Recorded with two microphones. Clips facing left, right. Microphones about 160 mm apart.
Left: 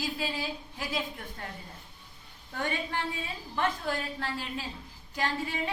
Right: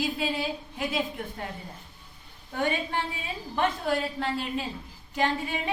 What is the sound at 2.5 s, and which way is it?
A woman's voice, 20° right (ahead or behind).